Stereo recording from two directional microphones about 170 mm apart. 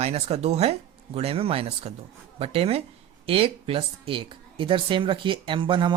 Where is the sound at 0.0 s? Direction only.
40° right (ahead or behind).